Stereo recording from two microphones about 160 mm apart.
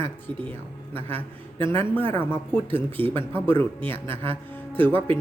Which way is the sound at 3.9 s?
15° left (ahead or behind).